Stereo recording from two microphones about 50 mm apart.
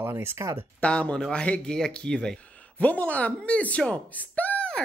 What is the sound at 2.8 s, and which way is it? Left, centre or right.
Speech, left.